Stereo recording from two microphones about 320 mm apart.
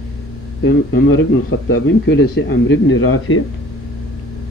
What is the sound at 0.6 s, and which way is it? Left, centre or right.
Speech, left.